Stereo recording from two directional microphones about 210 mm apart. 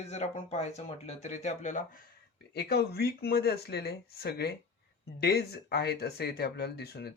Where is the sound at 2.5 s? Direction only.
50° left (ahead or behind).